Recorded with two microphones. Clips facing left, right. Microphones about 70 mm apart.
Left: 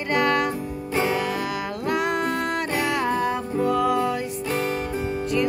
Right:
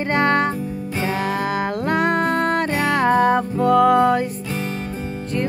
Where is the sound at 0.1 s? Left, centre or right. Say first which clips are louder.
Right 2 dB; right.